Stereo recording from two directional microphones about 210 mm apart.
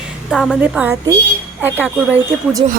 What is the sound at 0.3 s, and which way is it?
A woman's voice, centre (ahead or behind).